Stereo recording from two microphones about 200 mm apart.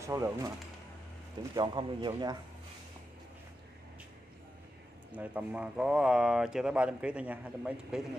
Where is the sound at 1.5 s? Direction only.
20° right (ahead or behind).